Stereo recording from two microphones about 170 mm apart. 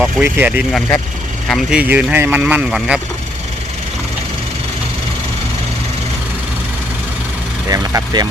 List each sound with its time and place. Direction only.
0.0 s speech: 10° right (ahead or behind)
7.7 s speech: 20° right (ahead or behind)